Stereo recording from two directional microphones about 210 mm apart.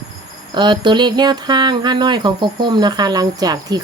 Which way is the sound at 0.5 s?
20° right (ahead or behind).